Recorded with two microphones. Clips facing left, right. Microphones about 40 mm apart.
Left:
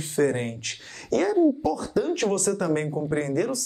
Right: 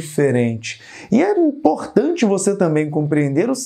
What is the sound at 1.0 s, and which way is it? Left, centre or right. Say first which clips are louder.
Speech: right 6 dB; right.